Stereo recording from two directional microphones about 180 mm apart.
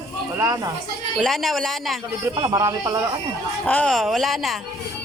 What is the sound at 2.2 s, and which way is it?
Speech, 20° right (ahead or behind).